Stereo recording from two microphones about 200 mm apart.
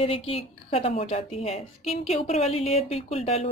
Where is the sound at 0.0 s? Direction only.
30° left (ahead or behind).